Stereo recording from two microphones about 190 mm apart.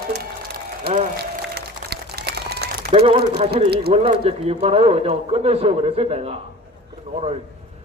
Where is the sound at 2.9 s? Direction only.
30° right (ahead or behind).